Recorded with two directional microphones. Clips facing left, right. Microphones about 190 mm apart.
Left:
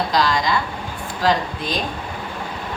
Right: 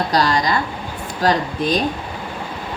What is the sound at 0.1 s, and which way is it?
Speech, 40° right (ahead or behind).